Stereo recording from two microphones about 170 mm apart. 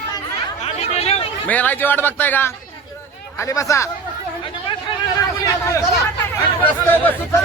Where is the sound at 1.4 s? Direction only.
10° left (ahead or behind).